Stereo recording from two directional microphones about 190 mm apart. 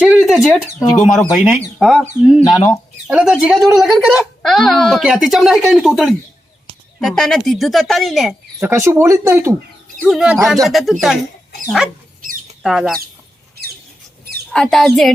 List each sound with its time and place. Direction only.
0.0 s a sound: 5° right (ahead or behind)
0.4 s speech: 5° right (ahead or behind)
8.5 s speech: 15° right (ahead or behind)
10.0 s speech: centre (ahead or behind)
12.2 s rodents: 45° right (ahead or behind)
12.6 s speech: centre (ahead or behind)
14.5 s speech: centre (ahead or behind)